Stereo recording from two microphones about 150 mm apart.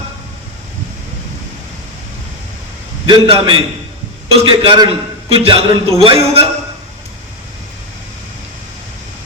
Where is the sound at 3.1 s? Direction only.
35° right (ahead or behind).